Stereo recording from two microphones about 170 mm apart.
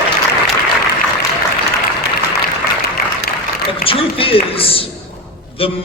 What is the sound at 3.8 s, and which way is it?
A man's voice, 35° left (ahead or behind).